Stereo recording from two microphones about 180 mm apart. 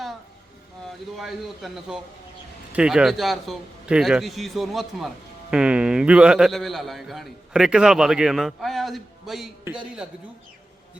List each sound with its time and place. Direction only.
1.1 s a man's voice: centre (ahead or behind)